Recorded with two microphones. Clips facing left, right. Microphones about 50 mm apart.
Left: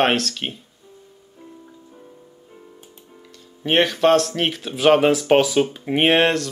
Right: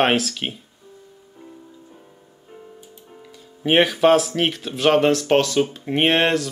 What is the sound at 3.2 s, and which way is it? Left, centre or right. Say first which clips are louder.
Speech: right 3 dB; centre.